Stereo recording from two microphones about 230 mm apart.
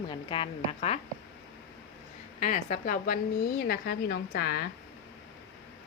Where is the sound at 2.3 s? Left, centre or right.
Left.